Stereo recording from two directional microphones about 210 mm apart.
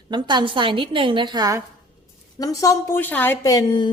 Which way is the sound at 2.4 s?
15° left (ahead or behind).